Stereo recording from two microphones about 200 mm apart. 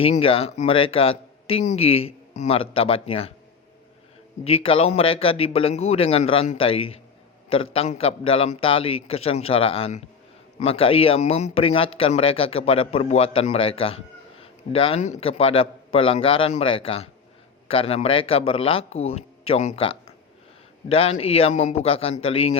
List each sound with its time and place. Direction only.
0.0 s speech: 30° left (ahead or behind)
4.4 s a man's voice: 30° left (ahead or behind)